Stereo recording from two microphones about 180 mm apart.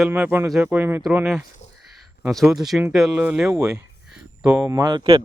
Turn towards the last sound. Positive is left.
turn(degrees=-25)  # may be behind; listen again after turning